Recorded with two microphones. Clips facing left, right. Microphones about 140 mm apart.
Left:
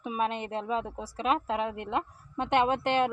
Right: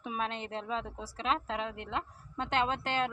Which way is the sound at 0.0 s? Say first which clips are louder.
Left 5 dB; 10° left (ahead or behind).